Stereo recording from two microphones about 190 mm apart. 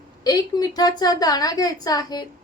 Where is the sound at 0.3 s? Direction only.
20° left (ahead or behind).